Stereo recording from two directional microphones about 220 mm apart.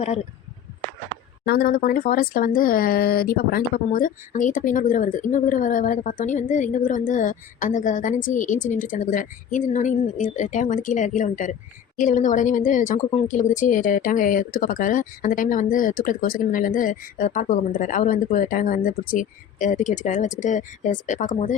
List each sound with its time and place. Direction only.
1.5 s a woman's voice: 45° left (ahead or behind)